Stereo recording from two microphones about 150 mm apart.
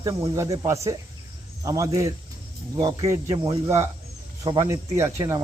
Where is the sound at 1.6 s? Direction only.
20° right (ahead or behind).